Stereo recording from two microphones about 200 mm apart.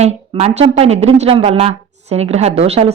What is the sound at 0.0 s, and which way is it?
A woman's voice, 35° right (ahead or behind).